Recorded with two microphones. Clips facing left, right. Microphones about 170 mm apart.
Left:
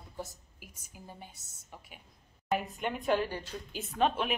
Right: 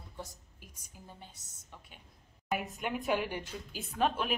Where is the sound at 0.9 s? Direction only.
10° left (ahead or behind).